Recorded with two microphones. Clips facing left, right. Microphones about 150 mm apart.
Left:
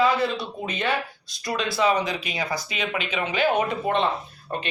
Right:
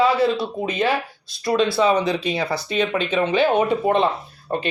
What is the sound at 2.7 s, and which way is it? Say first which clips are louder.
Speech: right 7 dB; 10° left (ahead or behind).